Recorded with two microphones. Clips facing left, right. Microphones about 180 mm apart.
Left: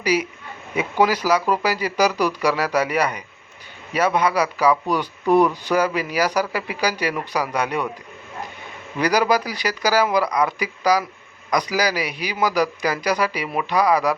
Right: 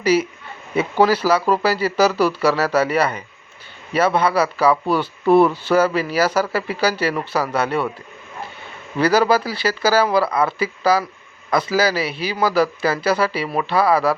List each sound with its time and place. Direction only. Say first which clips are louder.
0.0 s speech: right 4 dB; 10° left (ahead or behind)
9.0 s speech: right 3 dB; 15° left (ahead or behind)